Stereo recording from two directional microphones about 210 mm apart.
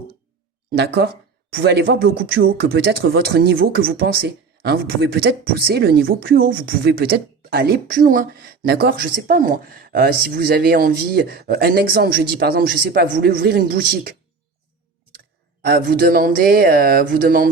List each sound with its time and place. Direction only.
0.7 s speech: 50° right (ahead or behind)
15.6 s speech: 45° right (ahead or behind)